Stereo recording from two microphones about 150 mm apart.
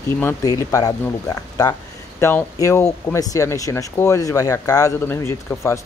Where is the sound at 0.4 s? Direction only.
25° left (ahead or behind).